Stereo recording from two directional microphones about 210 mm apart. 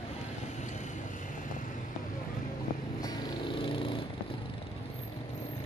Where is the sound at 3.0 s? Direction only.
25° left (ahead or behind).